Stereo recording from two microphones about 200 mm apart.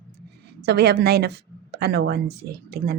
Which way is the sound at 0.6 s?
55° right (ahead or behind).